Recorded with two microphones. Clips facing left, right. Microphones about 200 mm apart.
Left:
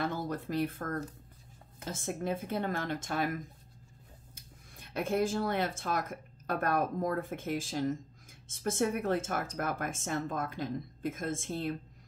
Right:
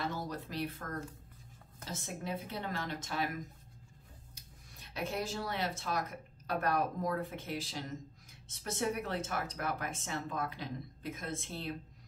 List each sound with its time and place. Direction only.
0.0 s a woman's voice: 50° left (ahead or behind)
4.4 s a woman's voice: 50° left (ahead or behind)